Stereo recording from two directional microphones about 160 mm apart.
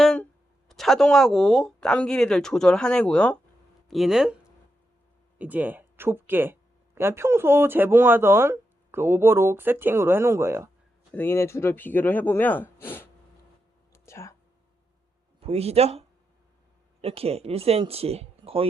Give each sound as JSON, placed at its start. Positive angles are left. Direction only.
{"t": 0.0, "sound": "a sound", "side_deg": 5}
{"t": 0.7, "sound": "speech", "side_deg": 0}
{"t": 5.4, "sound": "speech", "side_deg": -10}
{"t": 11.1, "sound": "speech", "side_deg": 15}
{"t": 13.9, "sound": "a sound", "side_deg": 15}
{"t": 15.4, "sound": "speech", "side_deg": -40}